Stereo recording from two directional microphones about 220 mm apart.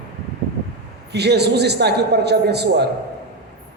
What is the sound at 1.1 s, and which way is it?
A man's voice, 50° right (ahead or behind).